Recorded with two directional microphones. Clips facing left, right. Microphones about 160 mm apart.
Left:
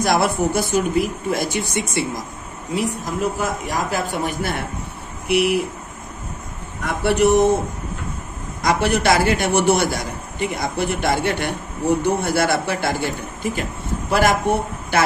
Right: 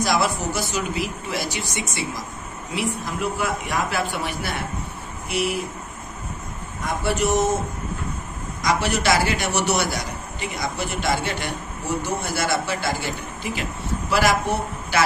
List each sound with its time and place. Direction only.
0.0 s a man's voice: 55° left (ahead or behind)
2.7 s a man's voice: 40° left (ahead or behind)
5.3 s a man's voice: 65° left (ahead or behind)
6.8 s a man's voice: 65° left (ahead or behind)
8.6 s a man's voice: 55° left (ahead or behind)